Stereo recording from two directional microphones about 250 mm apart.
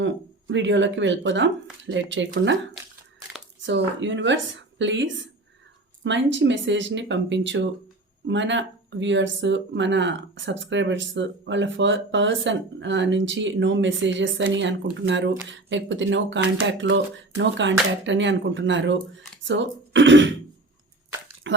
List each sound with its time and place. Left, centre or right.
0.0 s speech: right
3.6 s speech: right
21.5 s a sound: right